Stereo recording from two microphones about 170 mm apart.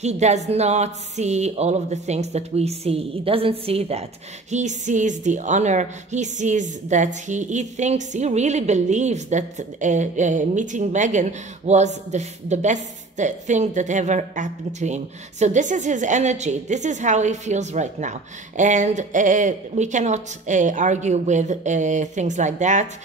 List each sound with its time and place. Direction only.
0.0 s a woman's voice: 40° right (ahead or behind)